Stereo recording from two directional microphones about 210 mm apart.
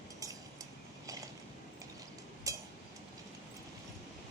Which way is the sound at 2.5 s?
15° right (ahead or behind).